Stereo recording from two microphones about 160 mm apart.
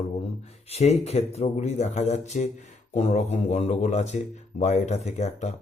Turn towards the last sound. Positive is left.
turn(degrees=45)  # may be behind; listen again after turning